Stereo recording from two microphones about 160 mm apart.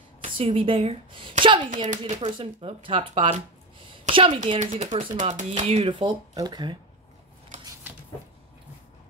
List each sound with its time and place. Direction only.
0.4 s speech: 35° right (ahead or behind)
1.4 s a sound: 30° right (ahead or behind)
1.9 s speech: 40° right (ahead or behind)